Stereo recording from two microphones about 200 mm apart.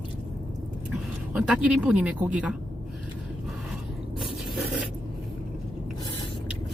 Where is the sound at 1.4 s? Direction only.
5° right (ahead or behind).